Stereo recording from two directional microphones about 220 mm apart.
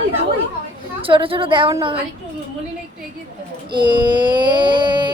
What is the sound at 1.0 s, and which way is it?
Speech, 25° right (ahead or behind).